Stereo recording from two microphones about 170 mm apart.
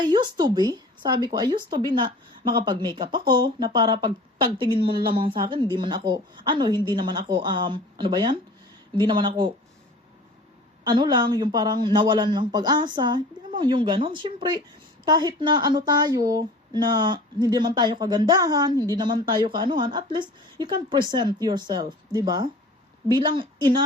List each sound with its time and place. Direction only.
0.0 s speech: 25° right (ahead or behind)
10.8 s speech: 25° right (ahead or behind)